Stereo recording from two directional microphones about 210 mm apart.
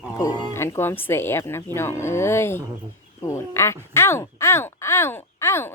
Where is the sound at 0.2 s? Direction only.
15° left (ahead or behind).